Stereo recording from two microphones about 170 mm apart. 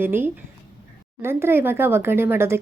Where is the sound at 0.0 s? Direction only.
10° right (ahead or behind).